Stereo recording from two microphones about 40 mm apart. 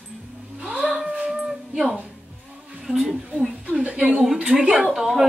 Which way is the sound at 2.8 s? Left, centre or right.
Centre.